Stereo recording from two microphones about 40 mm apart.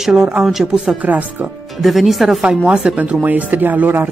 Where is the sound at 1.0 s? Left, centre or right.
Right.